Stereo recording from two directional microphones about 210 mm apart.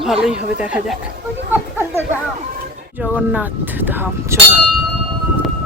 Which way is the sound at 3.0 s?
5° right (ahead or behind).